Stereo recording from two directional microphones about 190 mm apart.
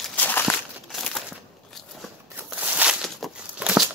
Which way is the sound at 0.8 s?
Centre (ahead or behind).